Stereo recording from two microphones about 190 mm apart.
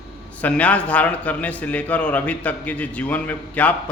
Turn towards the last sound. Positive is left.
turn(degrees=10)  # may be behind; listen again after turning